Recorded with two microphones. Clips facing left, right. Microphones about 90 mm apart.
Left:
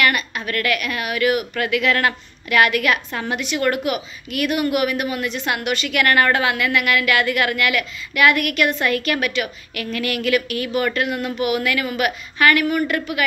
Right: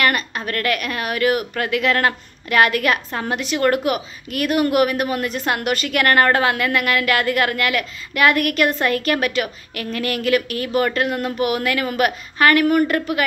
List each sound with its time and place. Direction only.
0.0 s a woman's voice: 35° right (ahead or behind)